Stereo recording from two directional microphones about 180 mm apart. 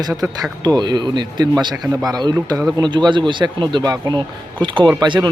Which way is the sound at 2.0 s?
20° right (ahead or behind).